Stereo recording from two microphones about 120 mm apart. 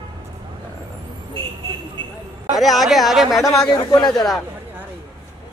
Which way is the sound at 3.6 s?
35° left (ahead or behind).